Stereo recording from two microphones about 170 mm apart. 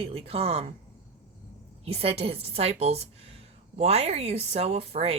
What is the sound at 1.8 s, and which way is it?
Speech, 35° right (ahead or behind).